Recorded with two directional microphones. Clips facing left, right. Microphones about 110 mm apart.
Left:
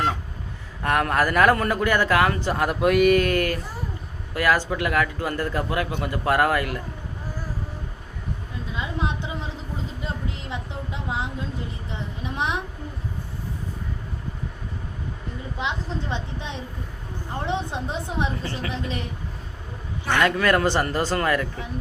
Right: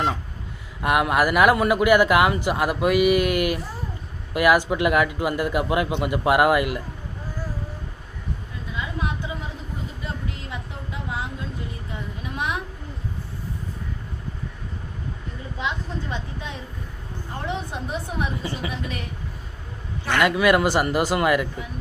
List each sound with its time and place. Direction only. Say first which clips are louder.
0.8 s a man's voice: right 2 dB; 10° right (ahead or behind)
8.7 s a sound: left 1 dB; 25° left (ahead or behind)
11.9 s a sound: left 1 dB; 25° left (ahead or behind)
15.5 s a woman's voice: even; 25° left (ahead or behind)
18.4 s a man's voice: right 1 dB; 15° right (ahead or behind)
18.7 s a woman's voice: left 2 dB; 25° left (ahead or behind)
20.1 s a man's voice: right 2 dB; 10° right (ahead or behind)